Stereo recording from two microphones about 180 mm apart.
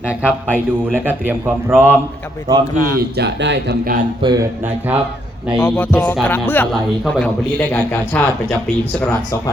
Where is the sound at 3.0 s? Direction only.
65° right (ahead or behind).